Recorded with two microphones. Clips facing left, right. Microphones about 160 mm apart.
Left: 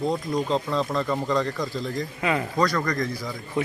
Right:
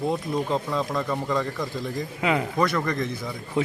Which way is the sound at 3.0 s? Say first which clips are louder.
Left 1 dB; 25° right (ahead or behind).